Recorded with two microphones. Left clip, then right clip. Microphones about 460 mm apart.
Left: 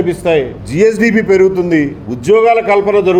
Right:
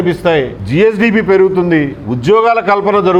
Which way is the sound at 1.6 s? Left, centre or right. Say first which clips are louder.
Right 1 dB; right.